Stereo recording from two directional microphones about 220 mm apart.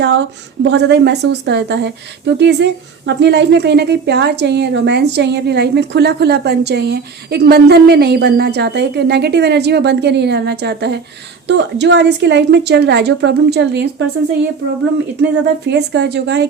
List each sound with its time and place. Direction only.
0.7 s a woman's voice: 50° right (ahead or behind)
15.2 s a woman's voice: 50° right (ahead or behind)